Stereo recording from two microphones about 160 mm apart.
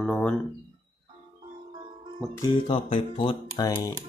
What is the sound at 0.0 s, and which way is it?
Speech, 5° left (ahead or behind).